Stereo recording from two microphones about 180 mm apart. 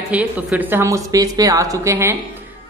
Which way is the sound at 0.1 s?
10° right (ahead or behind).